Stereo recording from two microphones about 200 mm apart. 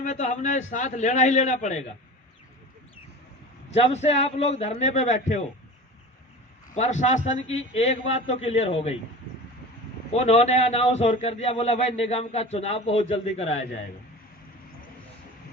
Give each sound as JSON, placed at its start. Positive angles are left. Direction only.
{"t": 0.0, "sound": "a man's voice", "side_deg": 35}
{"t": 3.7, "sound": "a man's voice", "side_deg": 35}
{"t": 6.7, "sound": "a man's voice", "side_deg": 35}
{"t": 10.2, "sound": "a man's voice", "side_deg": 35}